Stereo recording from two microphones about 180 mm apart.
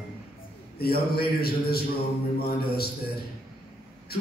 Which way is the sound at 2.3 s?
60° left (ahead or behind).